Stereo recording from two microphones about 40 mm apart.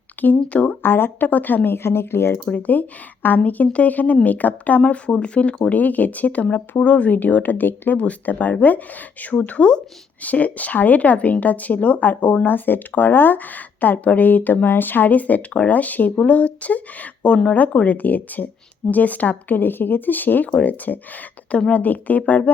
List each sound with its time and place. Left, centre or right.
0.4 s speech: left
0.8 s speech: left
1.3 s speech: left
1.7 s speech: left
2.7 s speech: left
4.8 s speech: left
7.9 s speech: left
12.5 s speech: left
13.8 s speech: left